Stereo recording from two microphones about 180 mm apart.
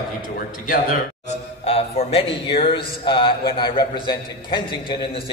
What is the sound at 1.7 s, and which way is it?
A man's voice, 35° left (ahead or behind).